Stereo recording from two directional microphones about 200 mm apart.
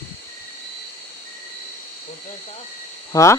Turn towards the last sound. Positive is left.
turn(degrees=15)  # may be behind; listen again after turning